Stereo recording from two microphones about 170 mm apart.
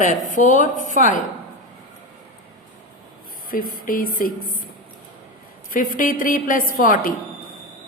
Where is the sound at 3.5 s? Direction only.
55° left (ahead or behind).